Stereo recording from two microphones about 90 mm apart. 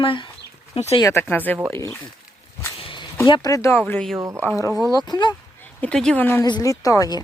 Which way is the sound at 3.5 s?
35° left (ahead or behind).